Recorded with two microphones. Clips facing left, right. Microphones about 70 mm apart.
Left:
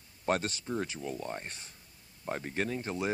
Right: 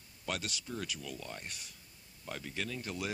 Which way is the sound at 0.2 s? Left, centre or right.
Left.